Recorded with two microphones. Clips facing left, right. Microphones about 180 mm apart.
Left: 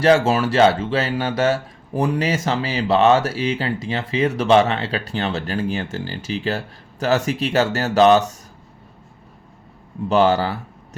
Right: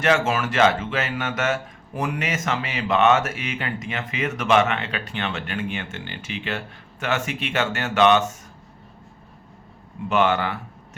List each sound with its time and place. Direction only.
0.0 s speech: 35° left (ahead or behind)
10.1 s speech: 35° left (ahead or behind)